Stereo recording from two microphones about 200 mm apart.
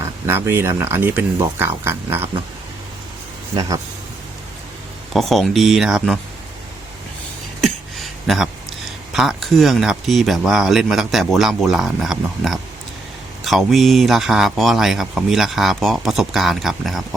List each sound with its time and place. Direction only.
0.0 s speech: 10° right (ahead or behind)
3.5 s speech: 20° right (ahead or behind)
5.1 s speech: centre (ahead or behind)
7.6 s a sound: centre (ahead or behind)
9.1 s speech: centre (ahead or behind)